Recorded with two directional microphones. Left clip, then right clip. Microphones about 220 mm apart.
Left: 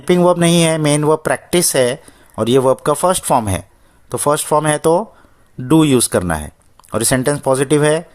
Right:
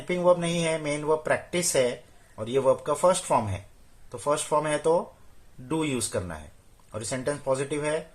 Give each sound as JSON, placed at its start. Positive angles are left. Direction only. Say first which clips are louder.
{"t": 0.0, "sound": "speech", "louder": "left 10 dB", "side_deg": 45}